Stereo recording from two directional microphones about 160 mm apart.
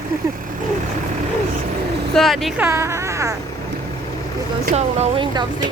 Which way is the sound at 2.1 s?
Centre (ahead or behind).